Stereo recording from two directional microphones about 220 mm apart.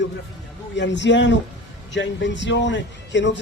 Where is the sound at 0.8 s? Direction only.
55° left (ahead or behind).